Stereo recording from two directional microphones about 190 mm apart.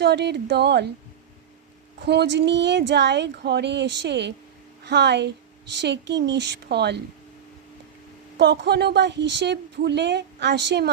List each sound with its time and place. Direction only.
0.0 s a woman's voice: 60° right (ahead or behind)
2.0 s a woman's voice: 60° right (ahead or behind)
8.4 s a woman's voice: 65° right (ahead or behind)